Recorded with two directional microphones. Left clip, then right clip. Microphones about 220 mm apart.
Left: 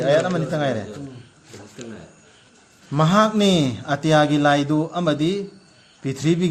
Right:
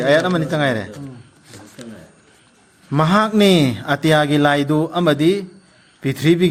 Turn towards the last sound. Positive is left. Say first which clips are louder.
# right 6 dB
turn(degrees=-30)  # may be behind; listen again after turning